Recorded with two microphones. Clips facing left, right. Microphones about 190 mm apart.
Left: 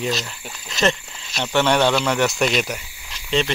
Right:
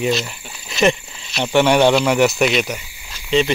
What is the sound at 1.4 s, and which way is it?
Speech, 15° right (ahead or behind).